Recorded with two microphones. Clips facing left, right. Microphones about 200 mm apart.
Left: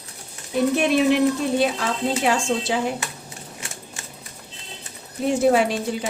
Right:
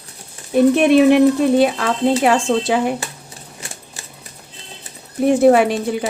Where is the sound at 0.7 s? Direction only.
60° right (ahead or behind).